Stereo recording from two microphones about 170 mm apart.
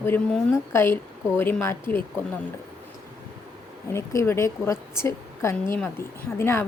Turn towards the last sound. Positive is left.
turn(degrees=15)  # may be behind; listen again after turning